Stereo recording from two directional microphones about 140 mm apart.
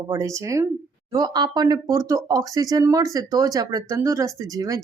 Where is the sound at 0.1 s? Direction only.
20° right (ahead or behind).